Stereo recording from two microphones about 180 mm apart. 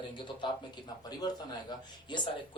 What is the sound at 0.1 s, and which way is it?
A man's voice, 25° left (ahead or behind).